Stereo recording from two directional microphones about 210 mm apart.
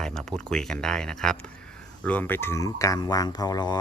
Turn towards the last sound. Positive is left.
turn(degrees=20)  # may be behind; listen again after turning